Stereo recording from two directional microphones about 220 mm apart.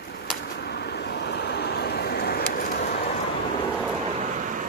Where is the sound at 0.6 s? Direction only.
50° left (ahead or behind).